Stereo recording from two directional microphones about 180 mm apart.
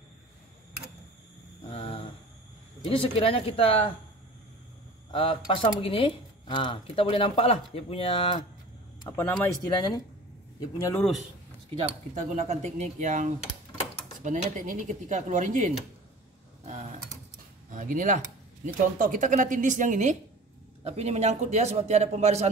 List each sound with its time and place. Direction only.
1.7 s a sound: 30° left (ahead or behind)
2.9 s speech: 30° left (ahead or behind)
5.1 s speech: 30° left (ahead or behind)
11.7 s a man's voice: 40° right (ahead or behind)
16.6 s typing: 40° right (ahead or behind)
17.6 s a man's voice: 45° right (ahead or behind)